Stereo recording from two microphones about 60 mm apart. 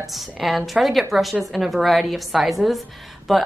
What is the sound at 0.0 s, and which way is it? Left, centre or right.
Speech, centre.